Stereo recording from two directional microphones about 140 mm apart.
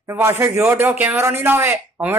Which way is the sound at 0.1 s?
15° right (ahead or behind).